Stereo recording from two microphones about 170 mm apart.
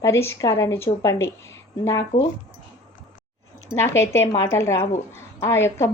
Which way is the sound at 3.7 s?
15° left (ahead or behind).